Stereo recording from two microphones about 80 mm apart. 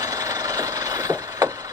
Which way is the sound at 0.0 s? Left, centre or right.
Right.